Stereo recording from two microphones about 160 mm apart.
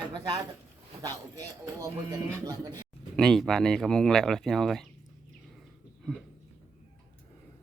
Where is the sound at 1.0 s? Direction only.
20° right (ahead or behind).